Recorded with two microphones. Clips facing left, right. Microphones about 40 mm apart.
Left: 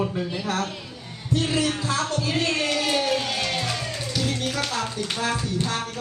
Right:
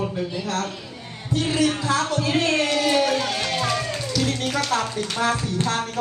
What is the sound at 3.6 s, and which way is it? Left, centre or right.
Music, right.